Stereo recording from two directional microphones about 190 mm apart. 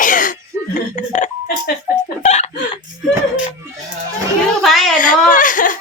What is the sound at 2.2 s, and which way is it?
Chicken, 35° left (ahead or behind).